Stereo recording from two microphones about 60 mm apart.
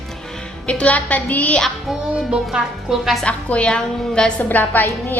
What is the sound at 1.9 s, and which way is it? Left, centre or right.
A woman's voice, centre.